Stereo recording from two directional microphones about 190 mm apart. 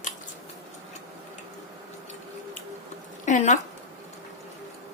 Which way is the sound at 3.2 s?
40° left (ahead or behind).